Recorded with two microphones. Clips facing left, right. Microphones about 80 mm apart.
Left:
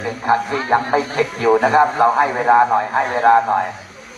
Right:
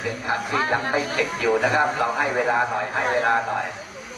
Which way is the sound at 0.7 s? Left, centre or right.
Left.